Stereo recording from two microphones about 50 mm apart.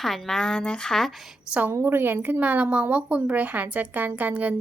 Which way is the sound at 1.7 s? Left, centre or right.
Right.